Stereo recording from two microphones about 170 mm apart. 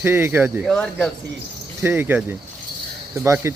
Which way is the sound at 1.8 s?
15° right (ahead or behind).